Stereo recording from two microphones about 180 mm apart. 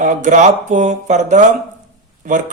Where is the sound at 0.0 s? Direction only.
45° right (ahead or behind).